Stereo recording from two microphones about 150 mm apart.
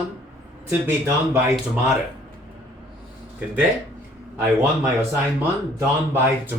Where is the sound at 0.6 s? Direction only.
15° right (ahead or behind).